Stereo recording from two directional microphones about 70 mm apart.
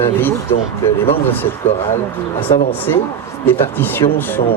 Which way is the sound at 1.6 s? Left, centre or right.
Left.